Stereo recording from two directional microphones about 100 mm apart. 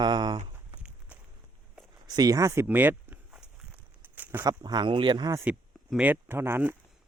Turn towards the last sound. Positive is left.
turn(degrees=-20)  # may be behind; listen again after turning